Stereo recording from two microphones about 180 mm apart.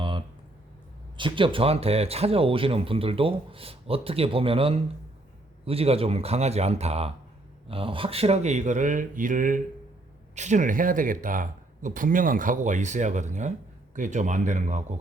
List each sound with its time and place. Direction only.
1.1 s speech: 25° right (ahead or behind)